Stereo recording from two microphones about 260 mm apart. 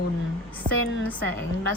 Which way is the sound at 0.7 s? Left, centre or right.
Right.